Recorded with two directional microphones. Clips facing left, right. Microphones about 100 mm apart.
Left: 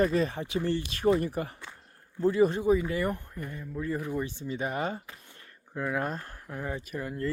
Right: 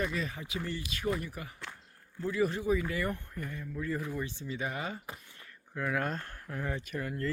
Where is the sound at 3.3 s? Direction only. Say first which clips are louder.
Left 2 dB; 20° left (ahead or behind).